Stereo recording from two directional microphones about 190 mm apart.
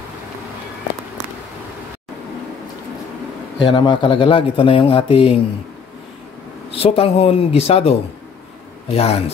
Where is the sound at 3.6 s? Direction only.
25° left (ahead or behind).